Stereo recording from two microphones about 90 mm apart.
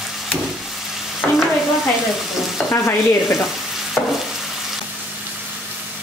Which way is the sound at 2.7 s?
35° left (ahead or behind).